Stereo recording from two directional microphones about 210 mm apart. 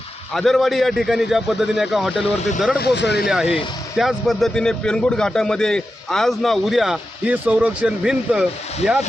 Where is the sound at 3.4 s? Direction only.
25° left (ahead or behind).